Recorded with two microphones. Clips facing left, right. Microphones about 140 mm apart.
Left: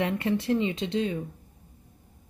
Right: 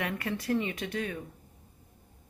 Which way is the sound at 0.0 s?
25° left (ahead or behind).